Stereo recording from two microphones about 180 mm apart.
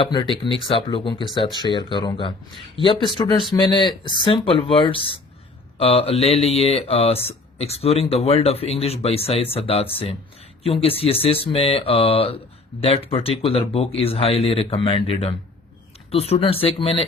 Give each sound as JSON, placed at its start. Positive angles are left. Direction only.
{"t": 0.0, "sound": "speech", "side_deg": 25}